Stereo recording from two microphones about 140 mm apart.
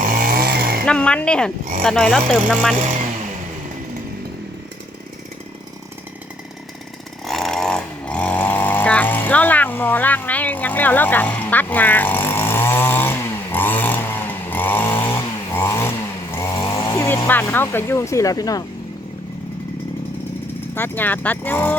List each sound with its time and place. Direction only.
0.0 s chainsaw: 85° right
0.9 s speech: 5° left (ahead or behind)
7.3 s a sound: centre (ahead or behind); by 15.9 s 15° left (ahead or behind)
16.3 s chainsaw: 20° left (ahead or behind)
17.2 s speech: 15° left (ahead or behind)
20.7 s speech: 15° left (ahead or behind)